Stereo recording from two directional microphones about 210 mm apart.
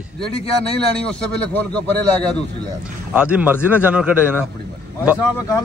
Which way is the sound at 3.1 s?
5° right (ahead or behind).